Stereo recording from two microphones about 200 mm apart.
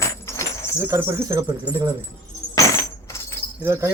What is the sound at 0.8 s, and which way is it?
Speech, 15° right (ahead or behind).